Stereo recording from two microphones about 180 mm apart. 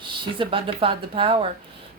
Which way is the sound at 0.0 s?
25° right (ahead or behind).